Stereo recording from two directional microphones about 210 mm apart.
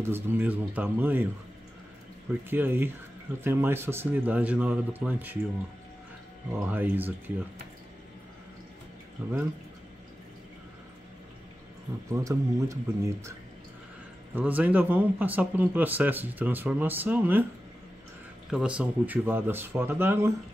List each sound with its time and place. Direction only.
0.0 s speech: 10° right (ahead or behind)
2.5 s speech: 10° right (ahead or behind)
6.5 s speech: 10° right (ahead or behind)
12.1 s speech: 15° right (ahead or behind)
14.3 s speech: 10° right (ahead or behind)
18.5 s speech: 5° right (ahead or behind)